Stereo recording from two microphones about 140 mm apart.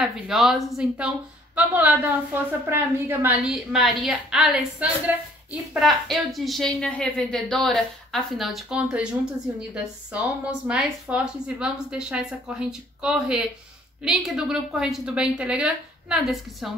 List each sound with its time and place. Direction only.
0.0 s a woman's voice: centre (ahead or behind)
3.4 s a woman's voice: centre (ahead or behind)